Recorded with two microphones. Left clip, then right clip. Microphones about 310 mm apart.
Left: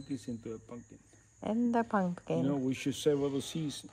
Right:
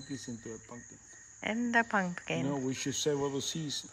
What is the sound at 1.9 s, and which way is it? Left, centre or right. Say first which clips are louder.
Speech: right 1 dB; centre.